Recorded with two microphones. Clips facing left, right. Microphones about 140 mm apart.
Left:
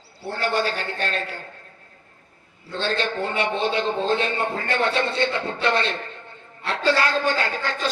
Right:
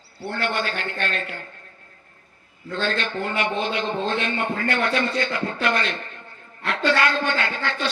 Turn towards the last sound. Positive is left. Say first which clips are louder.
# even
turn(degrees=40)  # may be behind; listen again after turning